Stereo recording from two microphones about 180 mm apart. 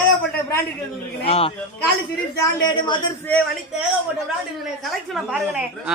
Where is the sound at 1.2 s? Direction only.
35° left (ahead or behind).